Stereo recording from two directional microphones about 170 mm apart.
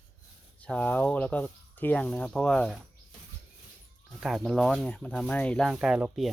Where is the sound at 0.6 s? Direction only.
10° left (ahead or behind).